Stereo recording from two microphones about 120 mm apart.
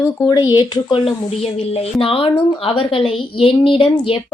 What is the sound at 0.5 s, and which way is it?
A woman's voice, 50° left (ahead or behind).